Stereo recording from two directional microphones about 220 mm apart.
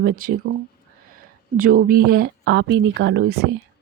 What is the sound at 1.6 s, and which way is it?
Speech, 40° right (ahead or behind).